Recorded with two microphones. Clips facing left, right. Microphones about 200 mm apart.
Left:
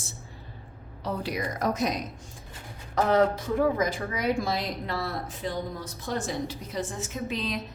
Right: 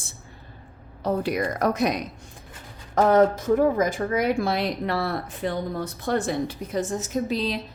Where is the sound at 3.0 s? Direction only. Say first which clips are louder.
Right 5 dB; 45° right (ahead or behind).